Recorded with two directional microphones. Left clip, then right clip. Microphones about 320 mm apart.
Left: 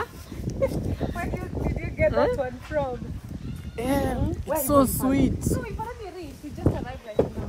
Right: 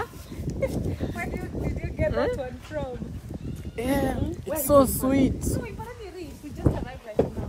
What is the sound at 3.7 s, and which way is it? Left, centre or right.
Speech, centre.